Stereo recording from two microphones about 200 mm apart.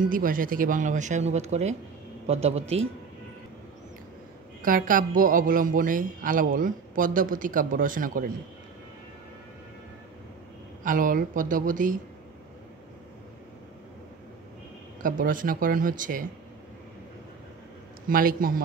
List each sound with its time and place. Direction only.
0.1 s speech: 45° right (ahead or behind)
4.6 s speech: 45° right (ahead or behind)
10.8 s speech: 40° right (ahead or behind)
15.0 s speech: 40° right (ahead or behind)
18.0 s speech: 45° right (ahead or behind)